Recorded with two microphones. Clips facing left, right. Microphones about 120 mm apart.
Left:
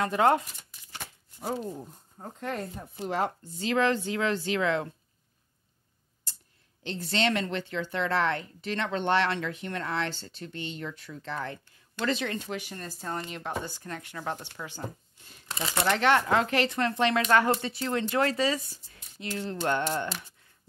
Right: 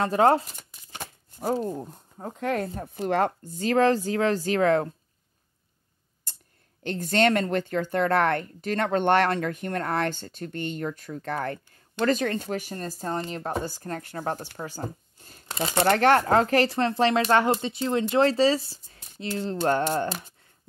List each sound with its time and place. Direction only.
0.0 s speech: 35° right (ahead or behind)
0.9 s chopping: 45° right (ahead or behind)
1.7 s speech: 85° right
2.8 s a woman's voice: 60° right (ahead or behind)
6.3 s a sound: 50° right (ahead or behind)
6.8 s a woman's voice: 50° right (ahead or behind)